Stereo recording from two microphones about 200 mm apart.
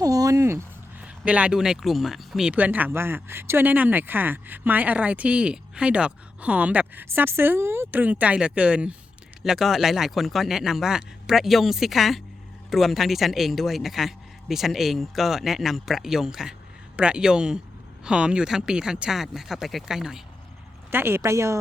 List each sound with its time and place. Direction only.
0.0 s speech: 20° right (ahead or behind)